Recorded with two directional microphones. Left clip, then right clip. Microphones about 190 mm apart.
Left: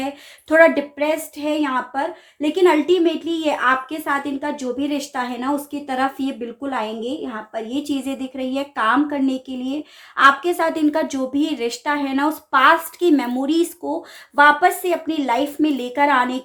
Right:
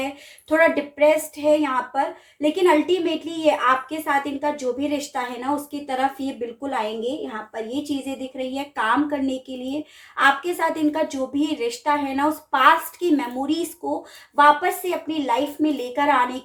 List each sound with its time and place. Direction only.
0.4 s a woman's voice: 35° left (ahead or behind)